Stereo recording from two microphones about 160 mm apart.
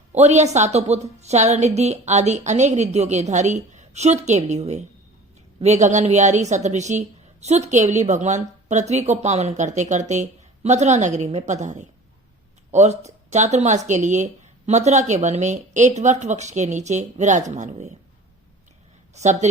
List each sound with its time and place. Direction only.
0.1 s speech: 45° right (ahead or behind)
19.1 s speech: 45° right (ahead or behind)